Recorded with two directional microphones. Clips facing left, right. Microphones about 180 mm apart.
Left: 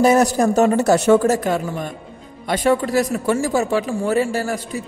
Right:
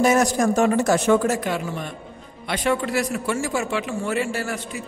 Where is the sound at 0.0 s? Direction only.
35° left (ahead or behind).